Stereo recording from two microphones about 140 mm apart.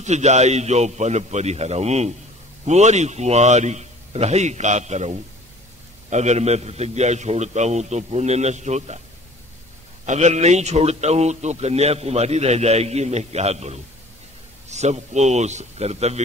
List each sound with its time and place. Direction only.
0.0 s a man's voice: 55° right (ahead or behind)
10.0 s a man's voice: 55° right (ahead or behind)